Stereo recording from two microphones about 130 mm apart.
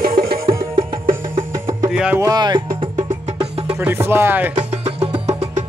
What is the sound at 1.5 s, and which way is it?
Music, 25° right (ahead or behind).